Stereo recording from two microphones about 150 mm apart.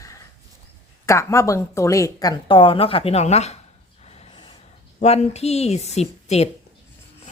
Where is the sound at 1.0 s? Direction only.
20° left (ahead or behind); by 3.6 s 45° left (ahead or behind).